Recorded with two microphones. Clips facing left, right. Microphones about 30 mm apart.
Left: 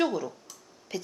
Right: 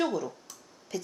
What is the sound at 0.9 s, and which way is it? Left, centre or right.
Speech, left.